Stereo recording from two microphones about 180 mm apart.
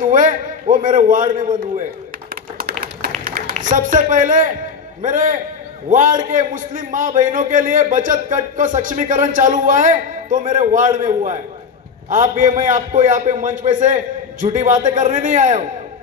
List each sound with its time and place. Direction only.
0.0 s a man's voice: 45° right (ahead or behind)
3.3 s a sound: 55° right (ahead or behind)
3.7 s a man's voice: 45° right (ahead or behind)